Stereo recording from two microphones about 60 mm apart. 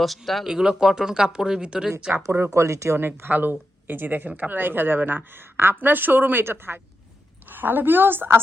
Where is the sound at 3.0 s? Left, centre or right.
Right.